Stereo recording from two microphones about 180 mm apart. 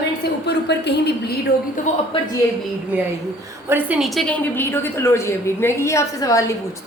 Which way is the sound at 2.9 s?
10° right (ahead or behind).